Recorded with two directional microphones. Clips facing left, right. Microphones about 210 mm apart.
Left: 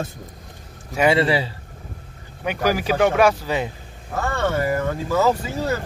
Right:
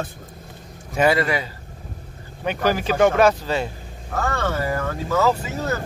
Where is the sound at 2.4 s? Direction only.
10° left (ahead or behind).